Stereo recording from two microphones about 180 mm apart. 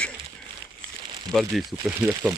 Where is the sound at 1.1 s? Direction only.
25° right (ahead or behind).